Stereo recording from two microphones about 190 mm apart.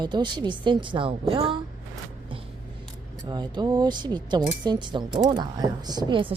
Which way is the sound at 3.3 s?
20° right (ahead or behind).